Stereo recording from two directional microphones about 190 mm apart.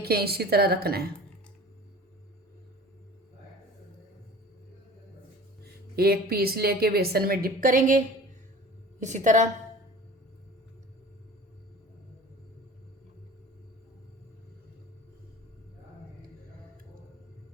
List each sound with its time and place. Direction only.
0.0 s a woman's voice: 55° right (ahead or behind)
6.0 s a woman's voice: 55° right (ahead or behind); by 9.5 s 40° right (ahead or behind)